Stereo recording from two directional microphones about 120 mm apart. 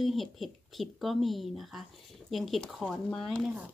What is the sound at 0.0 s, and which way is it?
Speech, centre (ahead or behind).